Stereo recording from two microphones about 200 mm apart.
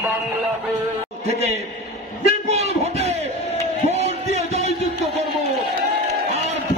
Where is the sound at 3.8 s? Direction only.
30° right (ahead or behind).